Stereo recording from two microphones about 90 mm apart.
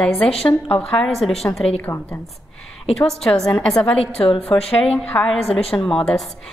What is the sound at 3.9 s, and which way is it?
Speech, 90° left.